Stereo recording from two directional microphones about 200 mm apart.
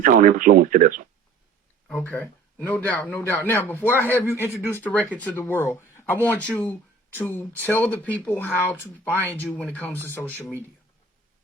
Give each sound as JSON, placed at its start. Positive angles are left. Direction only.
{"t": 0.0, "sound": "speech", "side_deg": -45}
{"t": 1.9, "sound": "speech", "side_deg": 10}